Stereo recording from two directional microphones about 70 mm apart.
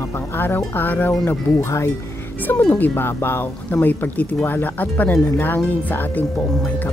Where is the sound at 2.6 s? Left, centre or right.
Left.